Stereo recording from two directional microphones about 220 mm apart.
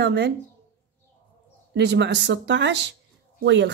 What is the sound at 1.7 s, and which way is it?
Speech, 50° right (ahead or behind).